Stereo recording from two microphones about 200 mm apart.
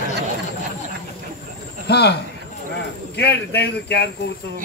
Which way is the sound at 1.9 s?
55° left (ahead or behind).